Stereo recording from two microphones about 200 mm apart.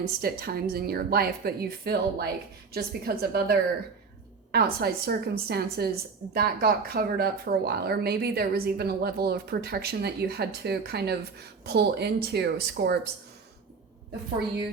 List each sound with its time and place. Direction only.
0.2 s speech: 50° right (ahead or behind)